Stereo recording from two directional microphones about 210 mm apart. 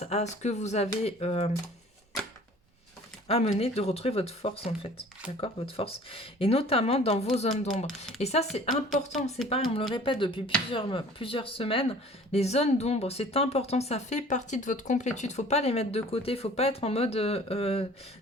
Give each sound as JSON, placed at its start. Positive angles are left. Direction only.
{"t": 0.0, "sound": "speech", "side_deg": 30}
{"t": 3.2, "sound": "speech", "side_deg": 30}
{"t": 8.7, "sound": "a woman's voice", "side_deg": 0}
{"t": 9.5, "sound": "speech", "side_deg": 25}